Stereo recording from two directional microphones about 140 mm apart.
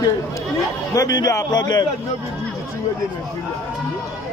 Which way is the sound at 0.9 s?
25° left (ahead or behind).